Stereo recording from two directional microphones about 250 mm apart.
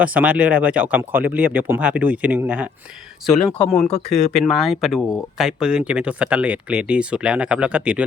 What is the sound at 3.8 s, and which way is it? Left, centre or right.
Speech, left.